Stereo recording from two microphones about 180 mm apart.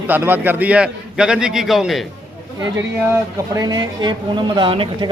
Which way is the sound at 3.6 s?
20° right (ahead or behind).